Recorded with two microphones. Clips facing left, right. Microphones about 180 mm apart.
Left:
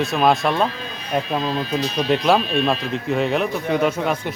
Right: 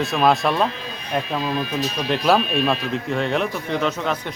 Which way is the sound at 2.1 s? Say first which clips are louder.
Left 1 dB; centre (ahead or behind).